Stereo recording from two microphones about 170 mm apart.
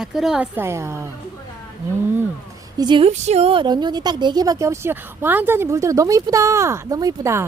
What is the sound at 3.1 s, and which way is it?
Speech, 40° right (ahead or behind).